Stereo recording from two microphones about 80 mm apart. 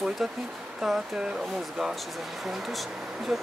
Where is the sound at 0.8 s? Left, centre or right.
Centre.